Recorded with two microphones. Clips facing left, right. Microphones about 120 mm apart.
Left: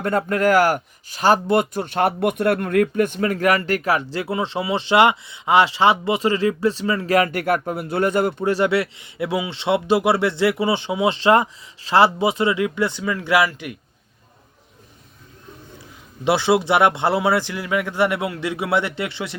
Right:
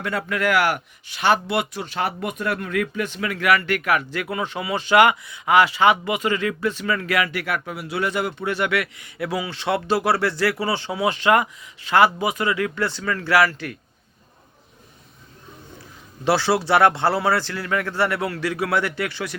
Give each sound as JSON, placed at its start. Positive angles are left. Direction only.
{"t": 0.0, "sound": "speech", "side_deg": 45}
{"t": 16.2, "sound": "speech", "side_deg": 20}